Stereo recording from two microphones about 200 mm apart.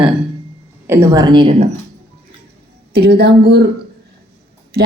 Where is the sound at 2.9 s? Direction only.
50° right (ahead or behind).